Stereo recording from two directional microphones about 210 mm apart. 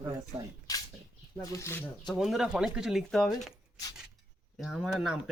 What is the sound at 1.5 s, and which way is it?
Speech, 10° left (ahead or behind).